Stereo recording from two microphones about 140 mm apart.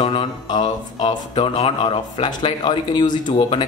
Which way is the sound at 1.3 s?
45° left (ahead or behind).